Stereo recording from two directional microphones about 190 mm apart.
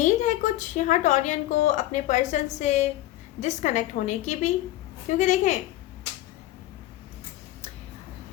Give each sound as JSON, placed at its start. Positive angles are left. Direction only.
{"t": 0.0, "sound": "a woman's voice", "side_deg": 40}